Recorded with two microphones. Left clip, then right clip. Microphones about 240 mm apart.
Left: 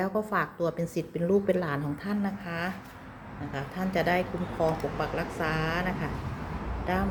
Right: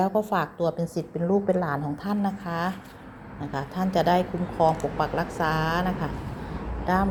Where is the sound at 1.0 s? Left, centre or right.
Centre.